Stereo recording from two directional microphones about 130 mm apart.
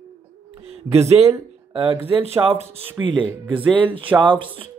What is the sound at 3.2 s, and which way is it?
Speech, 15° right (ahead or behind).